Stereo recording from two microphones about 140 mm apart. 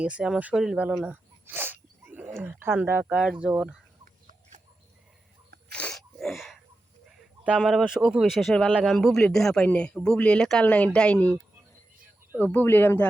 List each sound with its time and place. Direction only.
0.0 s speech: 10° right (ahead or behind)
5.7 s sneeze: 5° left (ahead or behind)
7.4 s speech: 5° right (ahead or behind)
12.4 s speech: 10° left (ahead or behind)